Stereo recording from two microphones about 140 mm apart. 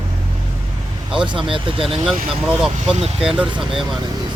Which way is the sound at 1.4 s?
40° right (ahead or behind).